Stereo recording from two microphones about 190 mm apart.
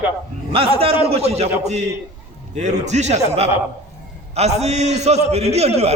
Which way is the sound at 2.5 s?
35° right (ahead or behind).